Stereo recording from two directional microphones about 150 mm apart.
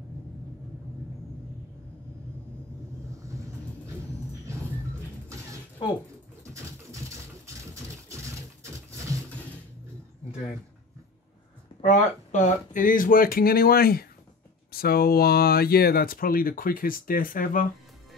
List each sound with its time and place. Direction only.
3.2 s vehicle: 20° right (ahead or behind)
6.4 s a sound: 20° right (ahead or behind)
11.8 s speech: 45° left (ahead or behind); by 17.6 s 65° left (ahead or behind)